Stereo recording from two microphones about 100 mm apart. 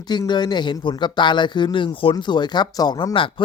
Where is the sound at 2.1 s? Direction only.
50° left (ahead or behind).